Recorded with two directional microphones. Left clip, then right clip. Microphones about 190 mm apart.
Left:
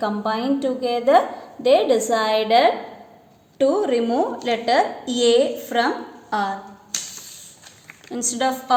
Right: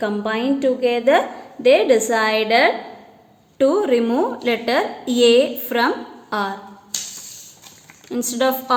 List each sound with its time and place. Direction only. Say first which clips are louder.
0.0 s a woman's voice: right 1 dB; 30° right (ahead or behind)
8.1 s a woman's voice: right 3 dB; 45° right (ahead or behind)